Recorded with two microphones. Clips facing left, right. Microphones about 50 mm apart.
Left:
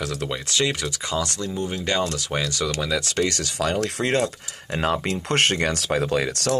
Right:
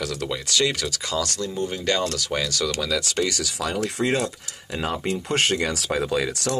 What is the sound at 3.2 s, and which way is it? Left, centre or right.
Speech, left.